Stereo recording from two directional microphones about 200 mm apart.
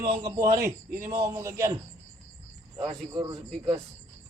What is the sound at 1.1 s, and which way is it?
A man's voice, 20° right (ahead or behind).